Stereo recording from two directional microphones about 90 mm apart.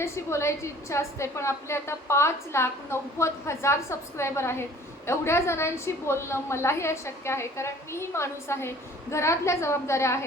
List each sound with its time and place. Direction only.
0.0 s a woman's voice: 30° left (ahead or behind)